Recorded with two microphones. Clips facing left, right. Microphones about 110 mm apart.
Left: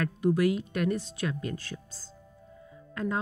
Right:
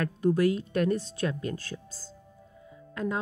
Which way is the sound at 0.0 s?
30° right (ahead or behind).